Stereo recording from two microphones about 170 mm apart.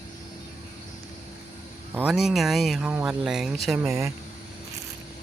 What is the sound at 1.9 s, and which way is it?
Speech, 10° right (ahead or behind).